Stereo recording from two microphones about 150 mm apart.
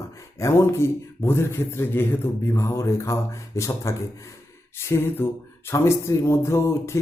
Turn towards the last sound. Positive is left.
turn(degrees=20)  # may be behind; listen again after turning